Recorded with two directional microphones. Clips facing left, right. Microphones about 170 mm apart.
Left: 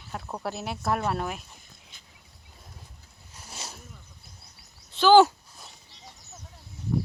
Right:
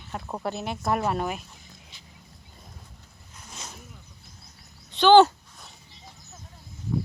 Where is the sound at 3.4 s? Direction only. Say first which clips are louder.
Left 1 dB; 5° left (ahead or behind).